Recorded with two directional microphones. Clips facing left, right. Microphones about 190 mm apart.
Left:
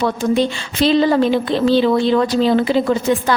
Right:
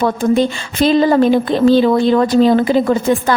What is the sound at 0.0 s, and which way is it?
A woman's voice, 50° right (ahead or behind).